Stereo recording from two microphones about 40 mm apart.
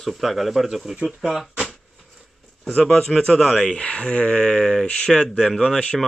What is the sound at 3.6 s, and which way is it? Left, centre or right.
Speech, left.